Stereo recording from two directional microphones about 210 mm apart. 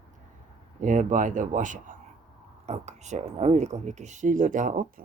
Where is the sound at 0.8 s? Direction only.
35° right (ahead or behind).